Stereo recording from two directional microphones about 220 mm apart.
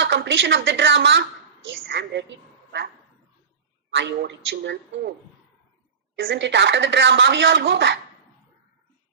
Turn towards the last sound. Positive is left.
turn(degrees=-55)  # may be behind; listen again after turning